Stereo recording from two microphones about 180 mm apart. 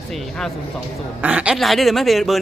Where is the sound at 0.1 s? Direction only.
Centre (ahead or behind).